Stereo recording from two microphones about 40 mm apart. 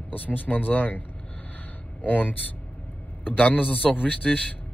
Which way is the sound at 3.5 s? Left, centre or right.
Left.